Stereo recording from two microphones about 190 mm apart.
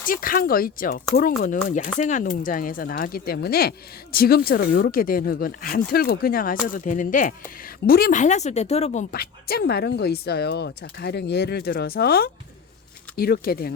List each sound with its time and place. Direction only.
0.1 s speech: 50° left (ahead or behind)